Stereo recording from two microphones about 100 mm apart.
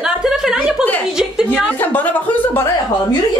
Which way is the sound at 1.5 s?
20° left (ahead or behind).